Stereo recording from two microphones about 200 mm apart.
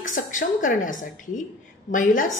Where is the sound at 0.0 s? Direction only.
40° left (ahead or behind).